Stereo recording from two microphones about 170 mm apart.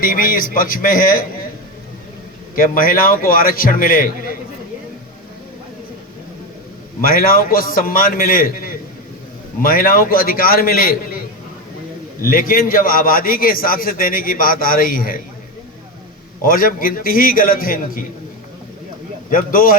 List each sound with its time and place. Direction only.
0.0 s a man's voice: 55° left (ahead or behind)
2.6 s a man's voice: 55° left (ahead or behind)
7.0 s a man's voice: 55° left (ahead or behind)
12.2 s a man's voice: 55° left (ahead or behind)
16.4 s a man's voice: 55° left (ahead or behind)
19.3 s a man's voice: 55° left (ahead or behind)